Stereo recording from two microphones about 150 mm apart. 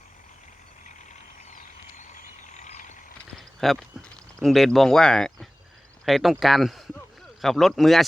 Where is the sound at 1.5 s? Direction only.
55° left (ahead or behind).